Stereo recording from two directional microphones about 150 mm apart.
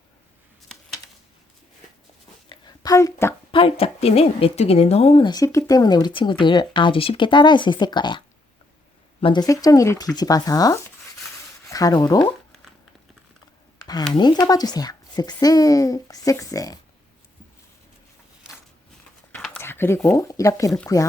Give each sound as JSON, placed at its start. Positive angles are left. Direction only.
{"t": 2.5, "sound": "a sound", "side_deg": 25}
{"t": 3.5, "sound": "a woman's voice", "side_deg": 40}
{"t": 9.2, "sound": "speech", "side_deg": 30}
{"t": 14.1, "sound": "speech", "side_deg": 30}
{"t": 19.4, "sound": "a sound", "side_deg": 15}
{"t": 20.1, "sound": "speech", "side_deg": 20}